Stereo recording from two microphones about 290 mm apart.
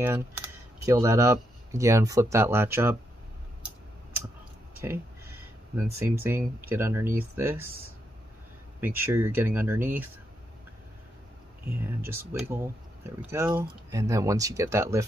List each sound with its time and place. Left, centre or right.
0.0 s speech: centre
4.8 s speech: centre
8.8 s speech: centre
11.8 s speech: centre